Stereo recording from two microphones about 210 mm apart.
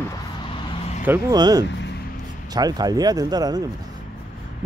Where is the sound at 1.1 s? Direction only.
20° right (ahead or behind).